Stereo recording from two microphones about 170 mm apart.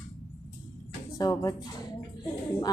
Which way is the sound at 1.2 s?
20° left (ahead or behind).